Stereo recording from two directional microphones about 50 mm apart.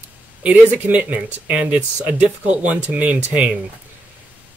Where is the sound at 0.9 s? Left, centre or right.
Right.